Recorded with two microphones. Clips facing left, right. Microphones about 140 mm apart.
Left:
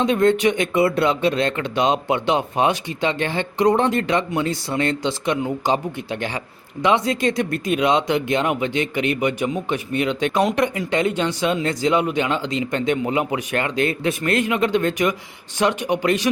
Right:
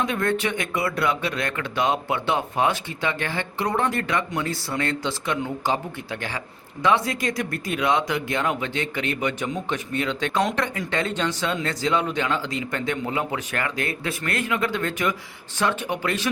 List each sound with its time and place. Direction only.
0.0 s speech: 20° left (ahead or behind)